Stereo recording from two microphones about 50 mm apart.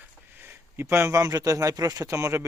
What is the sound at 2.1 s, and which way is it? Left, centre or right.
Speech, right.